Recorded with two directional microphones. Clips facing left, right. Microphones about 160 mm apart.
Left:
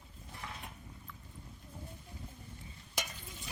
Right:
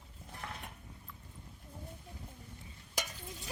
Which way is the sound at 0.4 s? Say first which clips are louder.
Right 2 dB; 50° right (ahead or behind).